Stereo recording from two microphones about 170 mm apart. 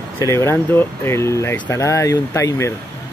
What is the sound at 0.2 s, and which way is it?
Speech, 15° left (ahead or behind).